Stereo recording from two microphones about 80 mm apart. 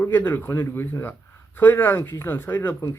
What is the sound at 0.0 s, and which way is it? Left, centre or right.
Speech, left.